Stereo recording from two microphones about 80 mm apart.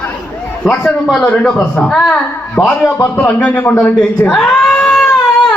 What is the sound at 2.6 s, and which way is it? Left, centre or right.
A man's voice, left.